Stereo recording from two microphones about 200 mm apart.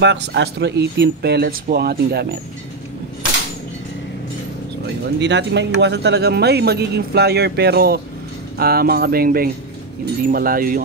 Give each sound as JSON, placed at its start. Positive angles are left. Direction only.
{"t": 0.0, "sound": "speech", "side_deg": -60}
{"t": 5.2, "sound": "speech", "side_deg": -60}